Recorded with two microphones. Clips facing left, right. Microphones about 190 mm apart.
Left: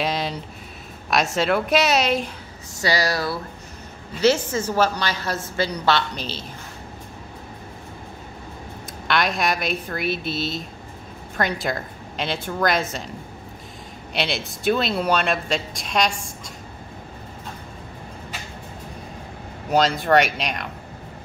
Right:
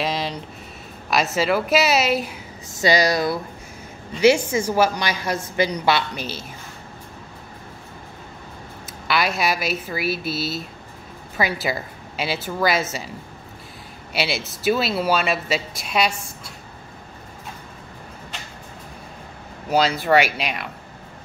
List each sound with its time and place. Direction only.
0.0 s a sound: centre (ahead or behind)
1.1 s speech: centre (ahead or behind)
2.8 s a woman's voice: 20° right (ahead or behind)
9.0 s speech: 5° right (ahead or behind)
14.1 s speech: 5° right (ahead or behind)
19.7 s speech: 5° right (ahead or behind)